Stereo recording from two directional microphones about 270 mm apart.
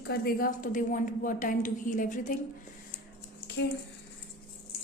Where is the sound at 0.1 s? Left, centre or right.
Left.